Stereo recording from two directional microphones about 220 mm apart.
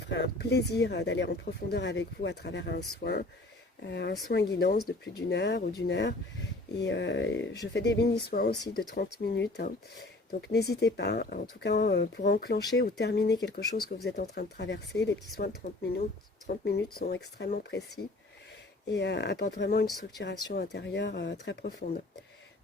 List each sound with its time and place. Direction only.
0.1 s speech: 50° left (ahead or behind)